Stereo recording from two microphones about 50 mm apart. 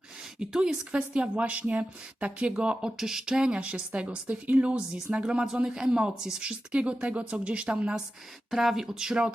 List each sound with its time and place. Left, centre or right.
0.3 s a woman's voice: centre
3.0 s a woman's voice: centre; by 4.8 s right
5.1 s a woman's voice: centre
8.4 s speech: centre